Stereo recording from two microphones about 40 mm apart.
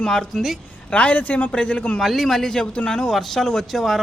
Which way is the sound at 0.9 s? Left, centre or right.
Left.